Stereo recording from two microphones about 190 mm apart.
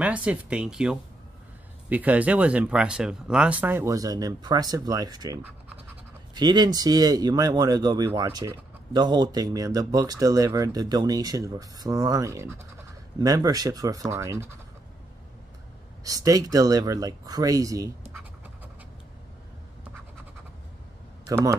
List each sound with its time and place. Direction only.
0.0 s speech: 5° right (ahead or behind)
16.0 s speech: 20° right (ahead or behind)
21.3 s speech: 15° right (ahead or behind)